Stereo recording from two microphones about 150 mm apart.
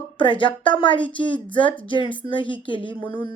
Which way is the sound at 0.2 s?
35° left (ahead or behind).